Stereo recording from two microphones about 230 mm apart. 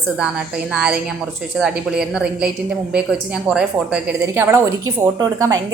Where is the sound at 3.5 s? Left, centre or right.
Centre.